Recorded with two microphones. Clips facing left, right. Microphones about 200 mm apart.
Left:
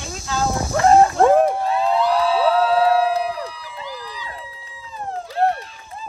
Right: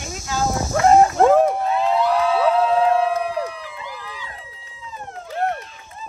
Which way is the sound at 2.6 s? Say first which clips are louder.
Left 1 dB; 35° left (ahead or behind).